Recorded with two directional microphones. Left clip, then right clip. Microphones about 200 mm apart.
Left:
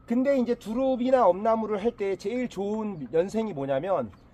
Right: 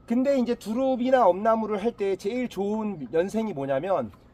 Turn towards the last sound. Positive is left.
turn(degrees=-25)  # may be behind; listen again after turning